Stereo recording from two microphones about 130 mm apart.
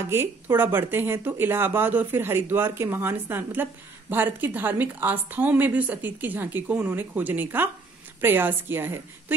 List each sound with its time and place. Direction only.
0.1 s a woman's voice: 20° right (ahead or behind)